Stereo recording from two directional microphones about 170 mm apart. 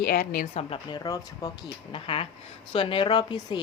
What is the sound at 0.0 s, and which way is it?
Speech, 60° left (ahead or behind).